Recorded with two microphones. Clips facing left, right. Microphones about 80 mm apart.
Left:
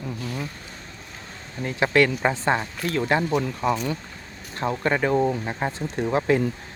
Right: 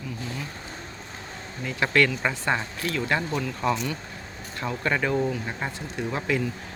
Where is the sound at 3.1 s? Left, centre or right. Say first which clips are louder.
Left 6 dB; left.